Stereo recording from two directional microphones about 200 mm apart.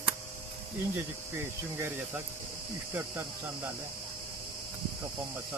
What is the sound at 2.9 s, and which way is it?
Speech, 10° right (ahead or behind).